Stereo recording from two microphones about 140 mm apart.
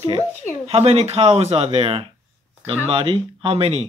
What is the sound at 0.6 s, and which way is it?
Speech, 45° right (ahead or behind).